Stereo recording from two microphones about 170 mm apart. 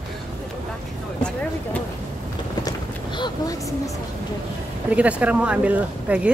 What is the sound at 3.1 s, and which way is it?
Vehicle, 25° left (ahead or behind).